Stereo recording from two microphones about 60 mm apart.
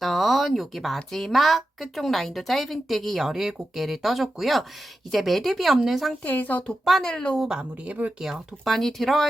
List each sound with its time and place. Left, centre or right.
0.0 s a sound: centre
0.9 s a woman's voice: centre
6.2 s speech: left
7.0 s a woman's voice: centre
7.4 s speech: centre
8.6 s a woman's voice: centre